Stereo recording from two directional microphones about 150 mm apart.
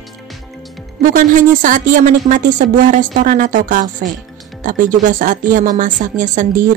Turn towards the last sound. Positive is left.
turn(degrees=-60)  # may be behind; listen again after turning